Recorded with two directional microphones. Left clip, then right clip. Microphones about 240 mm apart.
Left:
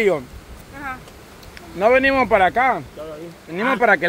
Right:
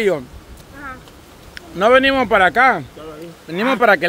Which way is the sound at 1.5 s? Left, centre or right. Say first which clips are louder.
Right 3 dB; centre.